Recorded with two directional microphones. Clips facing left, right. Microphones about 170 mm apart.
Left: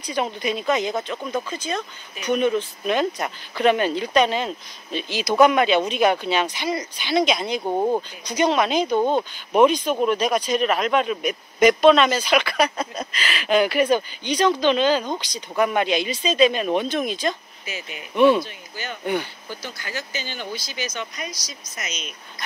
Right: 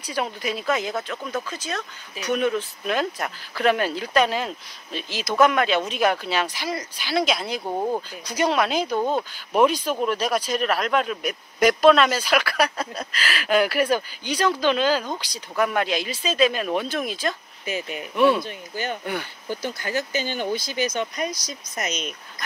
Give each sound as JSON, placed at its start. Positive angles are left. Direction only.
{"t": 0.0, "sound": "speech", "side_deg": -5}
{"t": 7.6, "sound": "speech", "side_deg": 15}
{"t": 8.3, "sound": "speech", "side_deg": -5}
{"t": 17.6, "sound": "speech", "side_deg": -45}
{"t": 18.1, "sound": "speech", "side_deg": -5}
{"t": 18.4, "sound": "speech", "side_deg": -50}